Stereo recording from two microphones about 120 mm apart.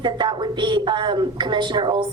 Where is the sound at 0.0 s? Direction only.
40° right (ahead or behind).